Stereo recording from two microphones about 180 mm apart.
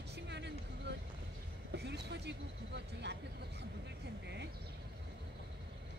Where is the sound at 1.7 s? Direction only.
70° right (ahead or behind).